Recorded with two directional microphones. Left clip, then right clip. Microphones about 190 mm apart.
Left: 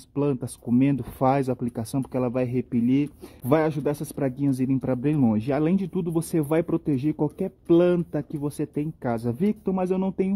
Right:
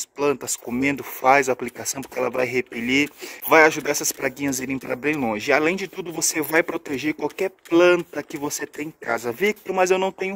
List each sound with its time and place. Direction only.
0.2 s speech: 5° right (ahead or behind)
9.1 s speech: 20° right (ahead or behind)